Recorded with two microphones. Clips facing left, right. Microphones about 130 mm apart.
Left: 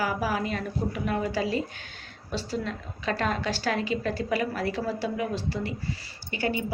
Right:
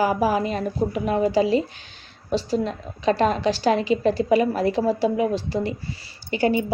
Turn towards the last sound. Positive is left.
turn(degrees=-20)  # may be behind; listen again after turning